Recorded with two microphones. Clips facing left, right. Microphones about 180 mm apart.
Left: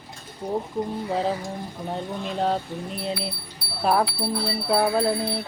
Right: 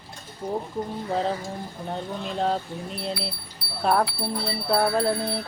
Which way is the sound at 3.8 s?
5° left (ahead or behind).